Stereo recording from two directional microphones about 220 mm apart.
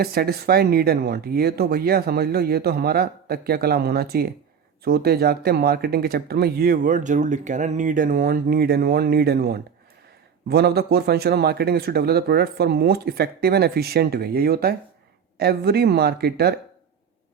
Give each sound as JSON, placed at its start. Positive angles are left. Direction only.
{"t": 0.0, "sound": "speech", "side_deg": -45}